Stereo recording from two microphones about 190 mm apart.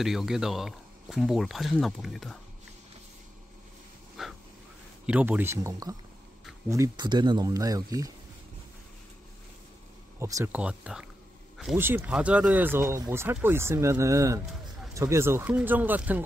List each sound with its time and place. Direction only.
0.0 s speech: centre (ahead or behind)
4.2 s wheeze: centre (ahead or behind)
5.0 s speech: 5° right (ahead or behind)
10.1 s speech: 15° right (ahead or behind)